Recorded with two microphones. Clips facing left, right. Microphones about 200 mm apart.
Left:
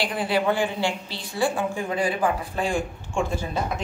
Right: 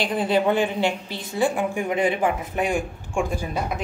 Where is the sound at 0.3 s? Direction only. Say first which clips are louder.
Right 3 dB; 20° right (ahead or behind).